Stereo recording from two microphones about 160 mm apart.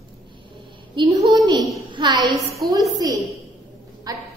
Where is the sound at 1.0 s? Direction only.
30° right (ahead or behind).